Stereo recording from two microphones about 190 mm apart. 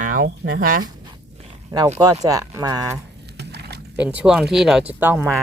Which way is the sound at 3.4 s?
60° right (ahead or behind).